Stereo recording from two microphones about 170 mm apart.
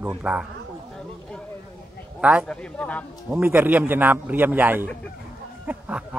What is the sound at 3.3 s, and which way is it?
Speech, 10° right (ahead or behind).